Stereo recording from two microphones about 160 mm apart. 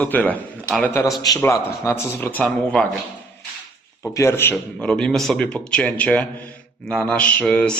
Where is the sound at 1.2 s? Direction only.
20° left (ahead or behind).